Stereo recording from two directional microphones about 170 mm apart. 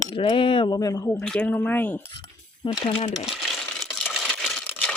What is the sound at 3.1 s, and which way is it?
Crumpling, centre (ahead or behind).